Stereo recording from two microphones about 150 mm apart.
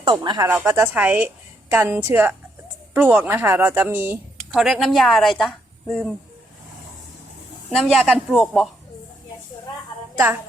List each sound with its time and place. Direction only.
0.0 s speech: 30° right (ahead or behind)
0.4 s speech: 20° right (ahead or behind)
4.5 s a woman's voice: centre (ahead or behind)
7.7 s a woman's voice: centre (ahead or behind)